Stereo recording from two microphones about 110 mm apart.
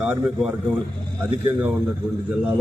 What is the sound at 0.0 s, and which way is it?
A man's voice, 10° right (ahead or behind).